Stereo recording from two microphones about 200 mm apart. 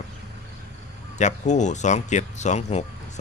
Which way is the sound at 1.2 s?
35° left (ahead or behind).